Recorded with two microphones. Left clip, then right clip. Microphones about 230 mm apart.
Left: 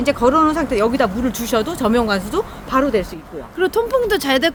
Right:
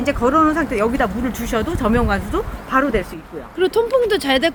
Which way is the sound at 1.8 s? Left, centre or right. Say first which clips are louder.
Left 1 dB; left.